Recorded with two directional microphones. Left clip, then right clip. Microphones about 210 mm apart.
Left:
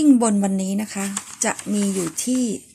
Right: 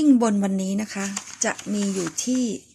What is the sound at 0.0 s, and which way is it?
A woman's voice, 5° right (ahead or behind).